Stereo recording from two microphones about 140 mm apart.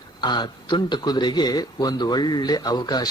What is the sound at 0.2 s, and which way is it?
Speech, 30° left (ahead or behind).